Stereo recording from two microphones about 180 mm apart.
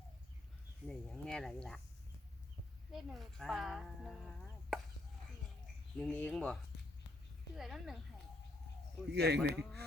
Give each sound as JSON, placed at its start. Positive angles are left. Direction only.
{"t": 0.9, "sound": "speech", "side_deg": 5}
{"t": 2.9, "sound": "speech", "side_deg": 0}
{"t": 6.0, "sound": "speech", "side_deg": 10}
{"t": 9.1, "sound": "speech", "side_deg": -65}